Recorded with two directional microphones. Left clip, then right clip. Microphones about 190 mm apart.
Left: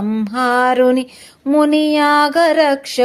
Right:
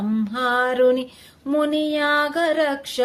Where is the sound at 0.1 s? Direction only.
35° left (ahead or behind).